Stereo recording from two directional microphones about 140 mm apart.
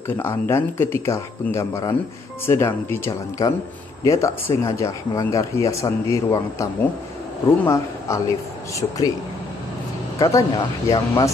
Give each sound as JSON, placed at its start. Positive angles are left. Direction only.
{"t": 0.5, "sound": "speech", "side_deg": 15}
{"t": 10.1, "sound": "speech", "side_deg": 25}